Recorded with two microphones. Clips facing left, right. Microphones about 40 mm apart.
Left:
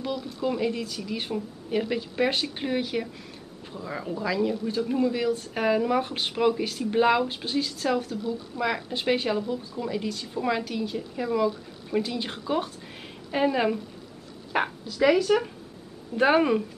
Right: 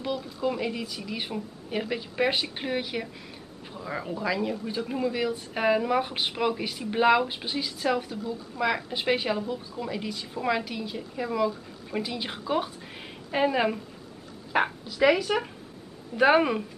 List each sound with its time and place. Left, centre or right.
0.1 s speech: right
0.5 s a woman's voice: centre